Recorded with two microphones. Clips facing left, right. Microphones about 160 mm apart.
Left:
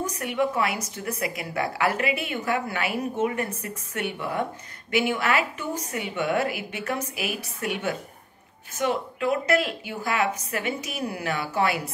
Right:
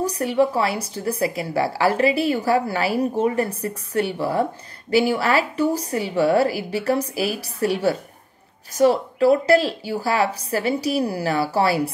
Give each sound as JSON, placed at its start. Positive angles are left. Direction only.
{"t": 0.0, "sound": "a woman's voice", "side_deg": -30}